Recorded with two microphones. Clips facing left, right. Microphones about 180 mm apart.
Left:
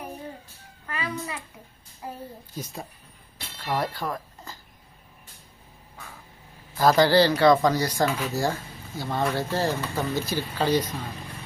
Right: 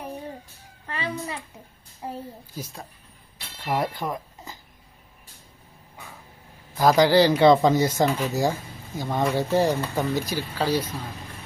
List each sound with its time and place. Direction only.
0.9 s a sound: 30° right (ahead or behind)
2.0 s a child's voice: 25° right (ahead or behind)
3.6 s speech: 25° right (ahead or behind)
6.7 s speech: 15° right (ahead or behind)